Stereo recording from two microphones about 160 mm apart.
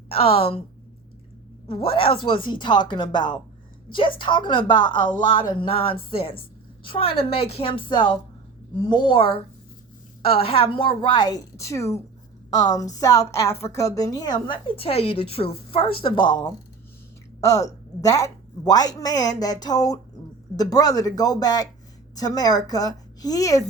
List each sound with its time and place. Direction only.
0.1 s a woman's voice: 35° left (ahead or behind)
1.6 s a woman's voice: 35° left (ahead or behind)